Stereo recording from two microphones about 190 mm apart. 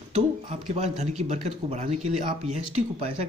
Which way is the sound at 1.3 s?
35° right (ahead or behind).